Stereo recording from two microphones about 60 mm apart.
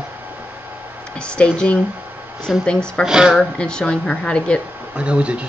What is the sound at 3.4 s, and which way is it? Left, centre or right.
Speech, centre.